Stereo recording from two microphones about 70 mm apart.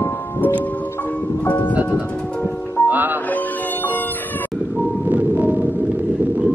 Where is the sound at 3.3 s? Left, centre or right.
Left.